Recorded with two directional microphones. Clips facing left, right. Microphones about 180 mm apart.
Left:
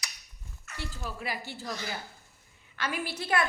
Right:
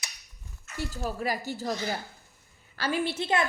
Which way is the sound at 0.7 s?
45° right (ahead or behind).